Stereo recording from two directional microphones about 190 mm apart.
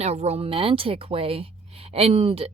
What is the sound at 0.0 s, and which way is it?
Speech, 35° right (ahead or behind).